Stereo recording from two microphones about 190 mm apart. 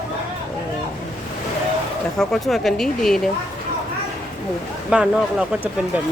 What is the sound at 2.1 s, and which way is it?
Speech, centre (ahead or behind).